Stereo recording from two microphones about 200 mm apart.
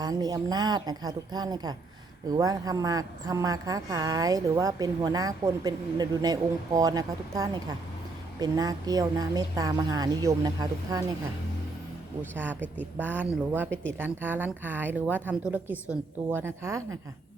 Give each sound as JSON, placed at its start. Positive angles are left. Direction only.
{"t": 0.0, "sound": "a woman's voice", "side_deg": -20}
{"t": 12.3, "sound": "a woman's voice", "side_deg": -10}